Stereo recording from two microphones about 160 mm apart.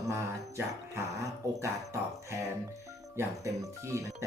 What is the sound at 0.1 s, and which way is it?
Speech, 15° right (ahead or behind).